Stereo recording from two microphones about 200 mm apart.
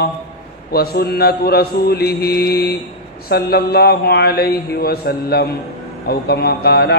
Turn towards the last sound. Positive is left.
turn(degrees=50)  # may be behind; listen again after turning